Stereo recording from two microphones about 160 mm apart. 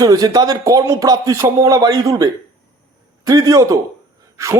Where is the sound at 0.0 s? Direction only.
25° right (ahead or behind).